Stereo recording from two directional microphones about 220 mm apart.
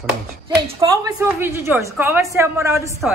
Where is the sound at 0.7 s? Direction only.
15° right (ahead or behind).